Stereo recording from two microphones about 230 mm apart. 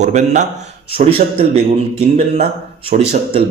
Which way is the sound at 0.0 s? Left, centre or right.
Right.